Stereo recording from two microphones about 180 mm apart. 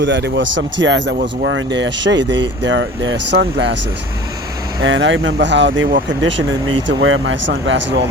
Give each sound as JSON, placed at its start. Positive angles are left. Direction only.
{"t": 0.0, "sound": "speech", "side_deg": -80}
{"t": 4.8, "sound": "speech", "side_deg": -90}